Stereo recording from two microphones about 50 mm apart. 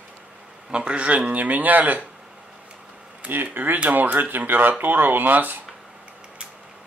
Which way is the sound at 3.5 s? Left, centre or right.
Right.